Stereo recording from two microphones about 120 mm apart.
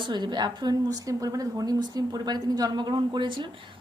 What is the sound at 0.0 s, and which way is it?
A woman's voice, 35° right (ahead or behind).